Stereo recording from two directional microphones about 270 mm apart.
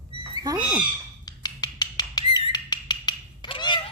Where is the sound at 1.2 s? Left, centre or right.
Centre.